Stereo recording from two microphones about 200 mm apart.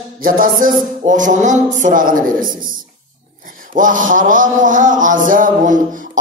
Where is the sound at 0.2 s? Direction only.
45° right (ahead or behind).